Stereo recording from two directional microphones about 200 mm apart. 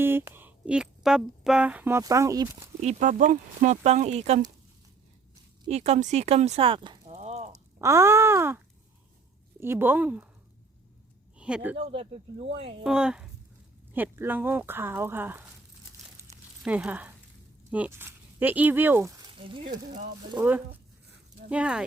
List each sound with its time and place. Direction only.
0.0 s speech: 10° right (ahead or behind)
2.8 s speech: 40° right (ahead or behind)
5.6 s speech: 30° right (ahead or behind)
7.2 s a sound: 35° right (ahead or behind)
7.8 s speech: 15° right (ahead or behind)
11.3 s speech: 5° right (ahead or behind)
11.8 s speech: 30° right (ahead or behind)
12.8 s speech: 5° right (ahead or behind)
16.2 s a sound: 5° right (ahead or behind)
17.7 s speech: 5° right (ahead or behind); by 19.6 s 25° right (ahead or behind)
21.5 s speech: 5° right (ahead or behind)